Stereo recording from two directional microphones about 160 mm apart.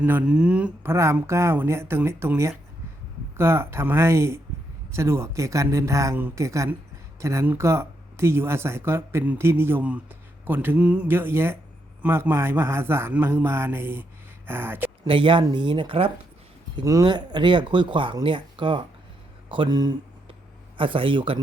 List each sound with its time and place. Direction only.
0.0 s speech: 10° right (ahead or behind)
15.0 s speech: 35° right (ahead or behind)
16.7 s speech: 20° right (ahead or behind)